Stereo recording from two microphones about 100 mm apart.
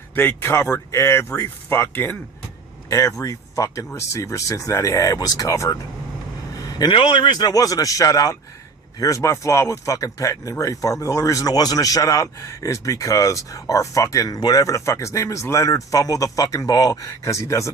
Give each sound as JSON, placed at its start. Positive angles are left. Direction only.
{"t": 0.2, "sound": "speech", "side_deg": 25}
{"t": 2.9, "sound": "speech", "side_deg": 35}